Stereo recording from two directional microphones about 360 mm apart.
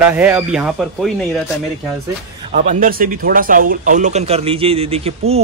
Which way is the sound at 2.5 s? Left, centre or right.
Right.